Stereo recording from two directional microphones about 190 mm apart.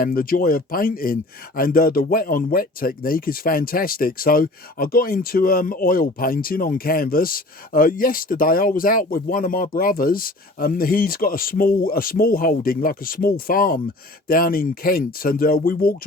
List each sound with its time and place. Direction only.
0.0 s speech: 50° left (ahead or behind)